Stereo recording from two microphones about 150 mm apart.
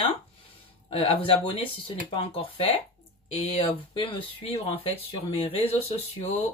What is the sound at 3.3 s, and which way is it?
Speech, 40° left (ahead or behind).